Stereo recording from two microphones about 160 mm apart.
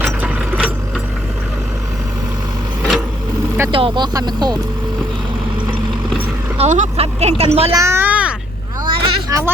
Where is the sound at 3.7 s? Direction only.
30° right (ahead or behind).